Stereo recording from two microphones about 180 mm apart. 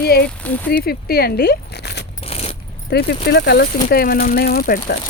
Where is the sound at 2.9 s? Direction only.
65° left (ahead or behind).